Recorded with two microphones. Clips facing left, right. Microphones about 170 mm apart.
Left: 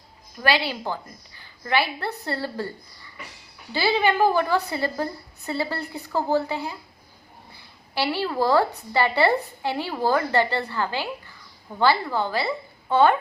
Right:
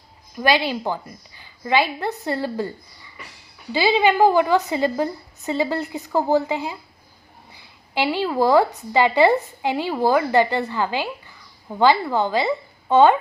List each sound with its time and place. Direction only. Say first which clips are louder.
0.4 s a woman's voice: right 4 dB; 15° right (ahead or behind)